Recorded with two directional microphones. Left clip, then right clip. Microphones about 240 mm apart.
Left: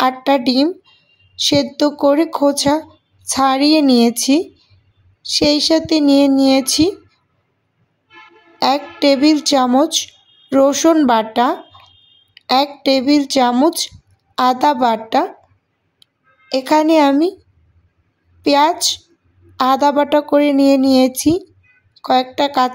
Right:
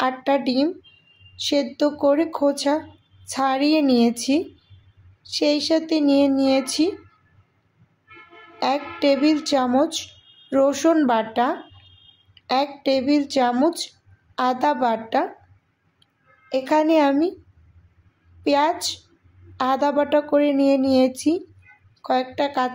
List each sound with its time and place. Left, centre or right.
0.0 s speech: left
8.5 s speech: left
18.4 s speech: left